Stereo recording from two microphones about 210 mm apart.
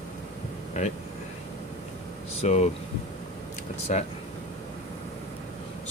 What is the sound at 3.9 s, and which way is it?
Speech, 35° left (ahead or behind).